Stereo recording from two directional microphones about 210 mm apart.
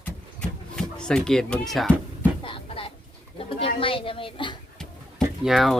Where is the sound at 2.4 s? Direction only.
25° left (ahead or behind).